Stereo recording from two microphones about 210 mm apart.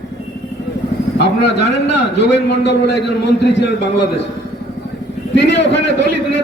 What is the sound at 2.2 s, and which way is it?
Speech, 55° left (ahead or behind).